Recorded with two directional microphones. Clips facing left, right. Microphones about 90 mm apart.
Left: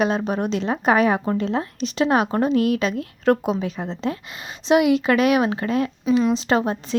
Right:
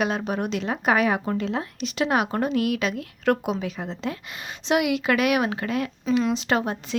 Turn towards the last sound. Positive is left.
turn(degrees=25)  # may be behind; listen again after turning